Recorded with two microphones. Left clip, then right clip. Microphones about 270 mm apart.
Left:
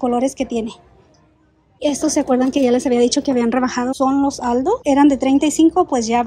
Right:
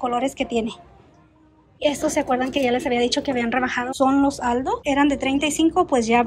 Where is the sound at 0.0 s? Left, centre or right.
Centre.